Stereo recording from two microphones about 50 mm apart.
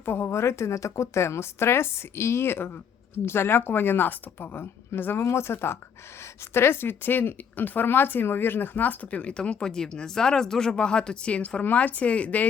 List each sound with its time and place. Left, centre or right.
0.0 s a sound: left
0.3 s a woman's voice: left
5.2 s speech: left